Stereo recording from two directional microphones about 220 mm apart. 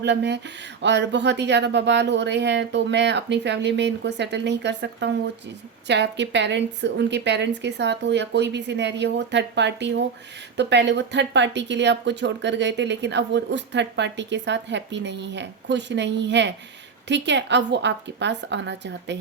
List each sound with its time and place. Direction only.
0.0 s speech: 50° right (ahead or behind)